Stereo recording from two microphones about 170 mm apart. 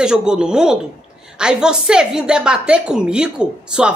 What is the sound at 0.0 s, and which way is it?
A woman's voice, 5° right (ahead or behind).